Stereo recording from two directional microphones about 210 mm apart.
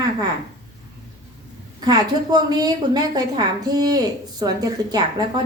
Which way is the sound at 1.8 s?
20° right (ahead or behind).